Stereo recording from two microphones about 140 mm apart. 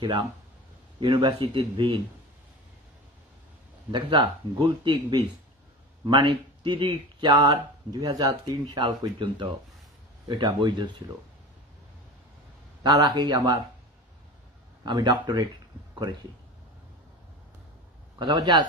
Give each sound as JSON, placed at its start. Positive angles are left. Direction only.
{"t": 0.9, "sound": "speech", "side_deg": -35}
{"t": 3.9, "sound": "speech", "side_deg": -35}
{"t": 12.8, "sound": "a man's voice", "side_deg": -30}
{"t": 14.8, "sound": "a man's voice", "side_deg": -30}
{"t": 18.2, "sound": "speech", "side_deg": -35}